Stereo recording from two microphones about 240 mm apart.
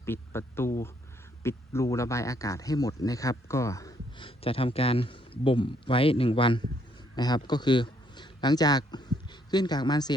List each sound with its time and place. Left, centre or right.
0.0 s a man's voice: centre